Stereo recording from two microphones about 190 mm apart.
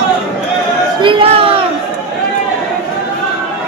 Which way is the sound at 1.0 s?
25° right (ahead or behind).